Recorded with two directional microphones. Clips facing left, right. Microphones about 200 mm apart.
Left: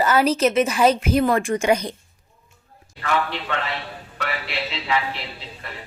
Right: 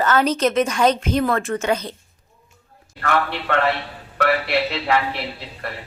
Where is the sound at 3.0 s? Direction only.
60° right (ahead or behind).